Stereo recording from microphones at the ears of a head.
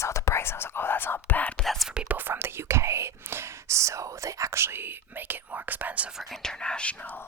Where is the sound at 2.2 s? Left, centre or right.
Right.